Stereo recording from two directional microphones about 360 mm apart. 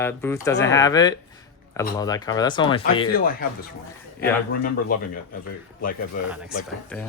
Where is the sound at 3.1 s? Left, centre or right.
Left.